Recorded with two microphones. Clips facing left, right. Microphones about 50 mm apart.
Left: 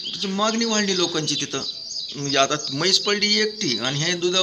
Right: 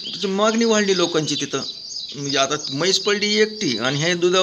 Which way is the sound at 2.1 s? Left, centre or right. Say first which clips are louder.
Even; centre.